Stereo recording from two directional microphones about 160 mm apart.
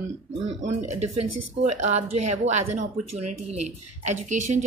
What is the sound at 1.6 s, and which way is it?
Speech, 45° right (ahead or behind).